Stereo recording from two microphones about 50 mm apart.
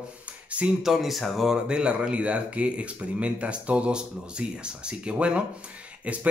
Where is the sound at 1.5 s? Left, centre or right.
Centre.